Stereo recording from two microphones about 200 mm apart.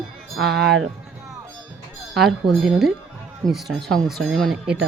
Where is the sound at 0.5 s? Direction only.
55° right (ahead or behind).